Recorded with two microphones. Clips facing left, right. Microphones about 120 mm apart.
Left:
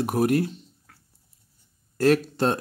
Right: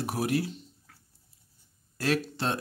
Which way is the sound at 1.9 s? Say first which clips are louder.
Left 8 dB; 45° left (ahead or behind).